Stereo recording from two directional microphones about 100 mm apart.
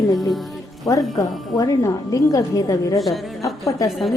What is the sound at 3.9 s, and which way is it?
Speech, centre (ahead or behind).